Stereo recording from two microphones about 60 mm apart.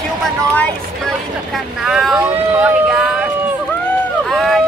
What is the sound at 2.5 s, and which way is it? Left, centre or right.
Speech, right.